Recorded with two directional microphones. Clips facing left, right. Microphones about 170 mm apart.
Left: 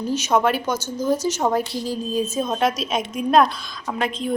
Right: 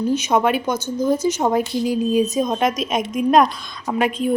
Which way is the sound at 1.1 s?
55° right (ahead or behind).